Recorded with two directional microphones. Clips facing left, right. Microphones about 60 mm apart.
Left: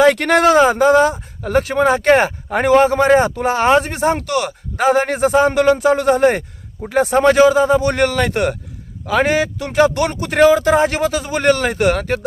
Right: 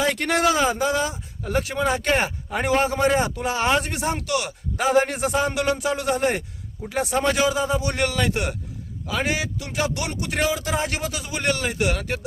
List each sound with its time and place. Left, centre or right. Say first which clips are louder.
0.0 s speech: left 9 dB; left